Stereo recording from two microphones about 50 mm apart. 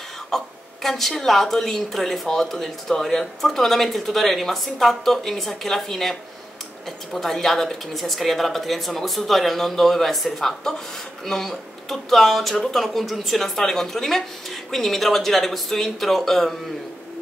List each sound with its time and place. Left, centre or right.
0.3 s a woman's voice: centre
7.2 s a woman's voice: centre